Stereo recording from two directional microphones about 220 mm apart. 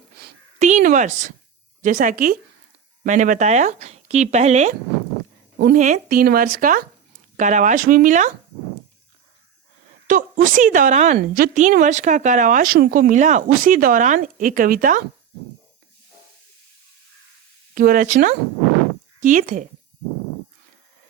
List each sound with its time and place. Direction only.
0.6 s speech: 35° right (ahead or behind)
10.1 s a woman's voice: 35° right (ahead or behind)
17.7 s speech: 40° right (ahead or behind)